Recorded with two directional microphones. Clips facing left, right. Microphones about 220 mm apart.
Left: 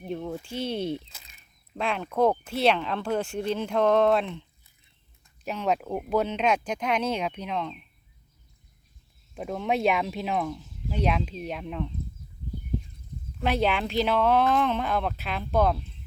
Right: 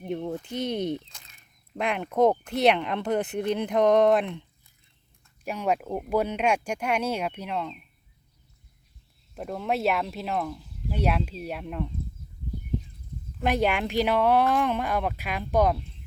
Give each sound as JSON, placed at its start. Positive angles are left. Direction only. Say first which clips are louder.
{"t": 0.4, "sound": "speech", "louder": "even", "side_deg": -20}
{"t": 0.9, "sound": "a sound", "louder": "right 1 dB", "side_deg": 10}
{"t": 1.8, "sound": "speech", "louder": "right 2 dB", "side_deg": -15}
{"t": 5.5, "sound": "speech", "louder": "even", "side_deg": -10}
{"t": 9.3, "sound": "speech", "louder": "left 1 dB", "side_deg": 0}
{"t": 13.4, "sound": "speech", "louder": "right 1 dB", "side_deg": -10}